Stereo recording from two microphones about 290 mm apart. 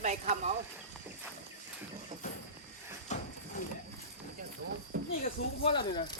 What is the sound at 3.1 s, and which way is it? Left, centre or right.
Horse, left.